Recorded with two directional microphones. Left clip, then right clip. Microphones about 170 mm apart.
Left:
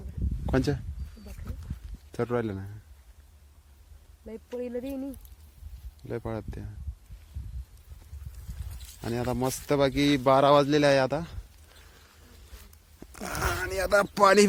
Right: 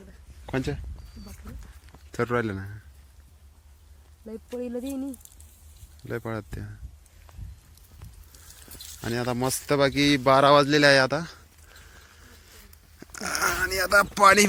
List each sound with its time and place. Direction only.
0.4 s speech: 50° left (ahead or behind)
2.1 s speech: centre (ahead or behind)
4.6 s speech: 45° right (ahead or behind)
6.0 s speech: centre (ahead or behind)
9.0 s a man's voice: 5° left (ahead or behind)
13.0 s dog: 15° left (ahead or behind)
13.3 s a sound: 30° left (ahead or behind)